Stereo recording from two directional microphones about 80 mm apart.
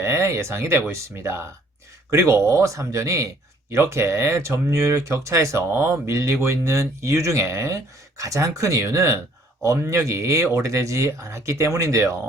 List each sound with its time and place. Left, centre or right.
0.0 s speech: right